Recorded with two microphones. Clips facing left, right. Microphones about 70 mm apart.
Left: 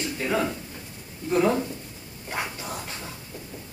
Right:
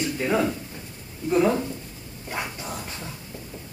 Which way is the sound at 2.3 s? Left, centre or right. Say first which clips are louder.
Even; left.